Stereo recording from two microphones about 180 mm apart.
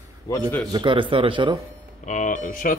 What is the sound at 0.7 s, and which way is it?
Speech, 25° right (ahead or behind).